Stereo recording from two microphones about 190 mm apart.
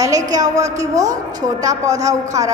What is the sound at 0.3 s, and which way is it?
A woman's voice, 20° right (ahead or behind).